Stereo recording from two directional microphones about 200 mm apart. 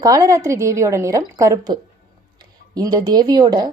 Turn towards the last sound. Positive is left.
turn(degrees=-20)  # may be behind; listen again after turning